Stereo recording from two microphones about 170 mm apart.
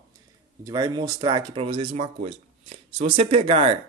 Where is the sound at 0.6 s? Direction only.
20° right (ahead or behind).